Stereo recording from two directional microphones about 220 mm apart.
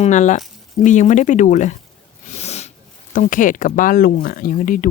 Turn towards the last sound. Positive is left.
turn(degrees=35)  # may be behind; listen again after turning